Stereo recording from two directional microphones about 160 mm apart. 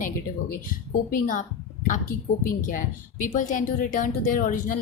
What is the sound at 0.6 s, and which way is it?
Speech, 60° left (ahead or behind).